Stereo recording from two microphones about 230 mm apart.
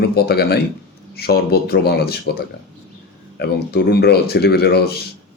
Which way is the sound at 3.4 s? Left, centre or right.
Left.